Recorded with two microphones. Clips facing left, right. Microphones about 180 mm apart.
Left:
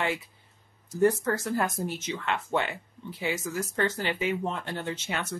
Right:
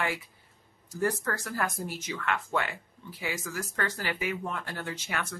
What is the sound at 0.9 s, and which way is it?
Speech, 20° left (ahead or behind).